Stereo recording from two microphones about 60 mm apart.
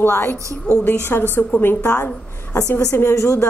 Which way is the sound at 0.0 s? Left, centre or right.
Left.